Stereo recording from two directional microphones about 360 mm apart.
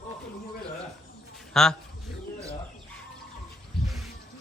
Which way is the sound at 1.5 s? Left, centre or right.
Centre.